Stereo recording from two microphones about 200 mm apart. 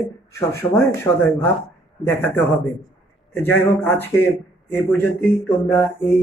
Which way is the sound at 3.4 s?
10° left (ahead or behind).